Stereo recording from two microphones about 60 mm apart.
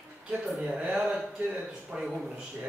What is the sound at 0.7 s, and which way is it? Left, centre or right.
A man's voice, centre.